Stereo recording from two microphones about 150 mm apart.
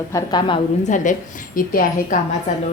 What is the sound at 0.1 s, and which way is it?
Speech, 25° left (ahead or behind).